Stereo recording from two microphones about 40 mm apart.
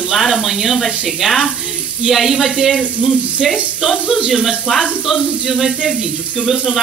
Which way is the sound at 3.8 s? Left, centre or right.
Centre.